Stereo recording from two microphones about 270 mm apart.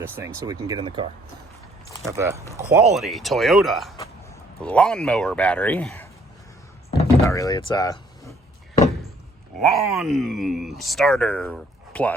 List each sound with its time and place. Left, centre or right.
0.0 s speech: centre
7.2 s speech: centre
9.6 s speech: centre